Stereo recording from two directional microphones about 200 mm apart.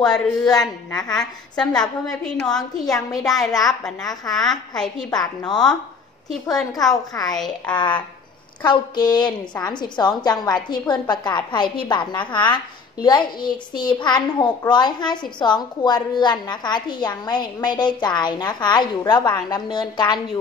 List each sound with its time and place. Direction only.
0.1 s a child's voice: 20° left (ahead or behind)
0.9 s a woman's voice: 5° left (ahead or behind)
3.3 s a woman's voice: centre (ahead or behind)
6.9 s a child's voice: 20° left (ahead or behind)
7.3 s a woman's voice: centre (ahead or behind)
7.7 s a child's voice: 25° left (ahead or behind)